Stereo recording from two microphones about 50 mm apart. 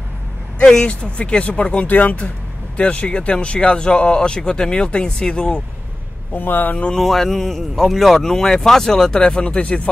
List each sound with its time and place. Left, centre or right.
0.6 s speech: centre
6.3 s speech: left
7.0 s speech: centre; by 9.8 s left